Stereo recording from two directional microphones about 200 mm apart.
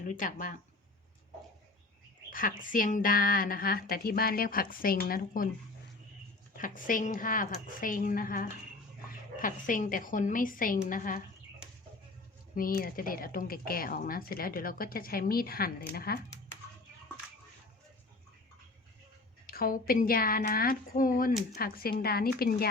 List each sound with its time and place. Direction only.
0.0 s speech: 40° left (ahead or behind)
2.3 s a woman's voice: 45° left (ahead or behind)
6.6 s a woman's voice: 40° left (ahead or behind)
12.5 s a woman's voice: 45° left (ahead or behind)
19.5 s a woman's voice: 45° left (ahead or behind)